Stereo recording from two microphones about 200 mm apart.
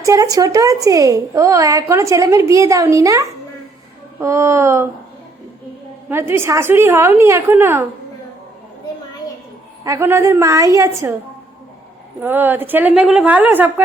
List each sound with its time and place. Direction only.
0.0 s a woman's voice: 15° right (ahead or behind)
6.1 s a woman's voice: 10° right (ahead or behind)
9.8 s a woman's voice: 15° right (ahead or behind)
12.2 s a woman's voice: 10° right (ahead or behind)